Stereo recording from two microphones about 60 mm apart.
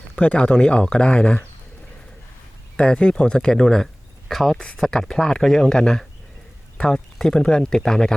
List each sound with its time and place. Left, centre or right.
0.2 s speech: left
2.7 s speech: centre